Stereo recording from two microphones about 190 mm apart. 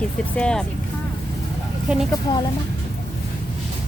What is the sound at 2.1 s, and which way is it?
Speech, 20° left (ahead or behind).